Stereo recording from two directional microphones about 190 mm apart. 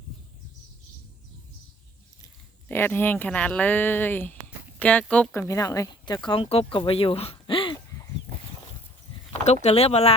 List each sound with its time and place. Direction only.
2.2 s speech: 10° left (ahead or behind); by 6.7 s 30° left (ahead or behind)
6.7 s a sound: 30° left (ahead or behind)
9.4 s speech: 35° left (ahead or behind)